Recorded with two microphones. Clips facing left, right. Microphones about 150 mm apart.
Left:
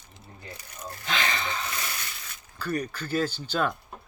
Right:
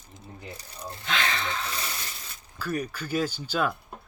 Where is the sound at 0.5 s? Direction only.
30° right (ahead or behind).